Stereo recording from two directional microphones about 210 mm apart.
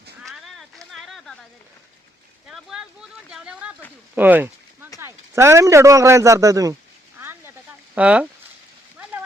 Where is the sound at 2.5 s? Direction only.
5° right (ahead or behind).